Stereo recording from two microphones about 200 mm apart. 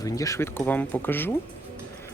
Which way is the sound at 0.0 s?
15° left (ahead or behind).